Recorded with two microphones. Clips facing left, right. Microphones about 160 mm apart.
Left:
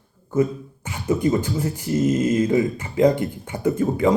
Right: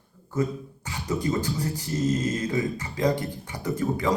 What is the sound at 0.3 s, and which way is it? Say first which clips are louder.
A man's voice: left 6 dB; 20° left (ahead or behind).